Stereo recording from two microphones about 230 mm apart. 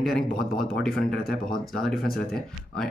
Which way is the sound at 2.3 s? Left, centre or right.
Centre.